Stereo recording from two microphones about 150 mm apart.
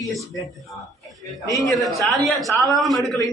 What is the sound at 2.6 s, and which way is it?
Speech, 25° right (ahead or behind).